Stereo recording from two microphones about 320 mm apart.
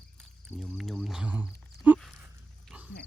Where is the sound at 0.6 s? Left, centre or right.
Centre.